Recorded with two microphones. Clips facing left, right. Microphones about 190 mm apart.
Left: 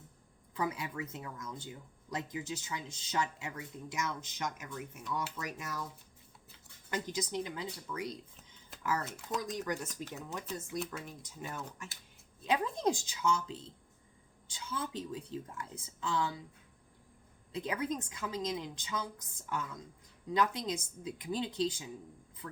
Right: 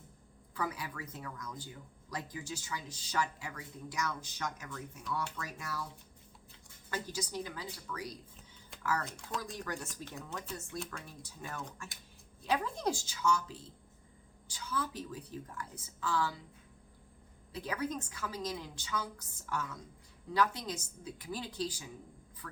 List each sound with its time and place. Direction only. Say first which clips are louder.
0.5 s speech: left 3 dB; 25° left (ahead or behind)
6.9 s speech: left 3 dB; 20° left (ahead or behind)
9.0 s speech: left 2 dB; 5° left (ahead or behind)
11.0 s speech: left 2 dB; 20° left (ahead or behind)
17.5 s speech: left 2 dB; 20° left (ahead or behind)
20.3 s speech: left 1 dB; 20° left (ahead or behind)